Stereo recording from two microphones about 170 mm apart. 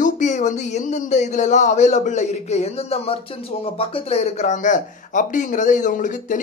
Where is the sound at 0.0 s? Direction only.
45° left (ahead or behind).